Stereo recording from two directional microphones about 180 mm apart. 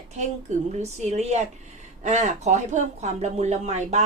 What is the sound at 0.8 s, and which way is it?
Speech, 40° right (ahead or behind).